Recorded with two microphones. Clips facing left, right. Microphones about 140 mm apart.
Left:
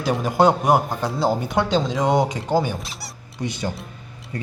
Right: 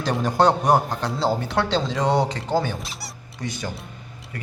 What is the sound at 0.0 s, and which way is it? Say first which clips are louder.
Speech: left 1 dB; 10° left (ahead or behind).